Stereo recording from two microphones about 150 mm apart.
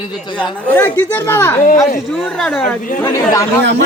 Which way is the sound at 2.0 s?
5° left (ahead or behind).